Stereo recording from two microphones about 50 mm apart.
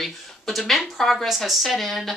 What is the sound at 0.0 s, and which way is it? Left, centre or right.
Speech, centre.